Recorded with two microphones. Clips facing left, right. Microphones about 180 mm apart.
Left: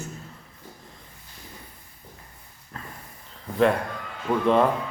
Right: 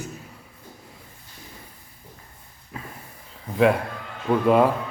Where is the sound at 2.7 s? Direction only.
10° right (ahead or behind).